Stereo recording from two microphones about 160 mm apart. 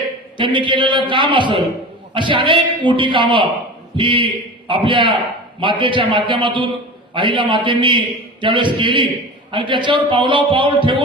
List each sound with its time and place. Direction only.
0.3 s a man's voice: 30° right (ahead or behind)